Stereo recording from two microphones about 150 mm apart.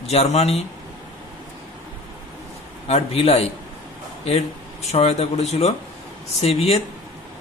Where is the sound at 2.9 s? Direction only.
40° left (ahead or behind).